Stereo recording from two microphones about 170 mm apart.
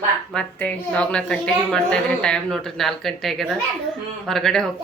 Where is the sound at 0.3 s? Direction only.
5° left (ahead or behind).